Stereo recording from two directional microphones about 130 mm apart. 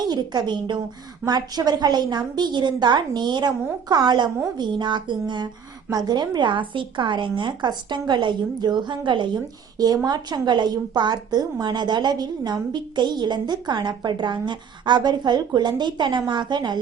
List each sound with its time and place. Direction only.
0.0 s a woman's voice: 35° right (ahead or behind)